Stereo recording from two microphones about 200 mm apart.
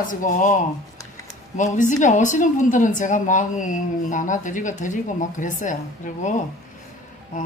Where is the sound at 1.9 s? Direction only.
40° left (ahead or behind).